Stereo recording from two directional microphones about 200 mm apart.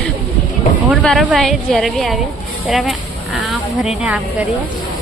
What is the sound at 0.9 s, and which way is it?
A woman's voice, centre (ahead or behind).